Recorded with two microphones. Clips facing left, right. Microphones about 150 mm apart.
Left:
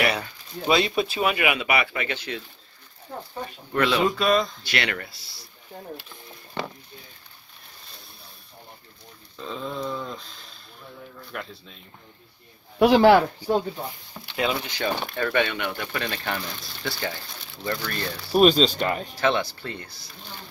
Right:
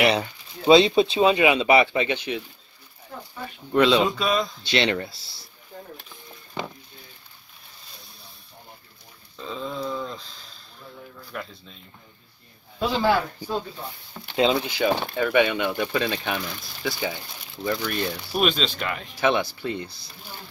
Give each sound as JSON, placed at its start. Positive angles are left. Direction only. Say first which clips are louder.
{"t": 0.0, "sound": "speech", "louder": "right 4 dB", "side_deg": -25}
{"t": 3.7, "sound": "speech", "louder": "right 5 dB", "side_deg": -20}
{"t": 4.0, "sound": "speech", "louder": "left 2 dB", "side_deg": 0}
{"t": 4.6, "sound": "speech", "louder": "right 6 dB", "side_deg": -25}
{"t": 9.4, "sound": "speech", "louder": "even", "side_deg": 0}
{"t": 12.7, "sound": "speech", "louder": "left 7 dB", "side_deg": 70}
{"t": 14.3, "sound": "speech", "louder": "right 5 dB", "side_deg": -25}
{"t": 14.7, "sound": "speech", "louder": "right 4 dB", "side_deg": -15}
{"t": 18.3, "sound": "speech", "louder": "left 8 dB", "side_deg": 35}
{"t": 19.1, "sound": "speech", "louder": "right 4 dB", "side_deg": -15}